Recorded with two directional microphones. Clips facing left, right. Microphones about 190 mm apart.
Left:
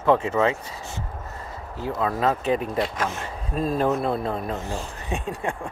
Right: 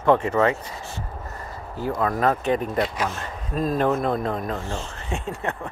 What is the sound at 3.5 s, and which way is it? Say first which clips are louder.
Speech: right 1 dB; 40° right (ahead or behind).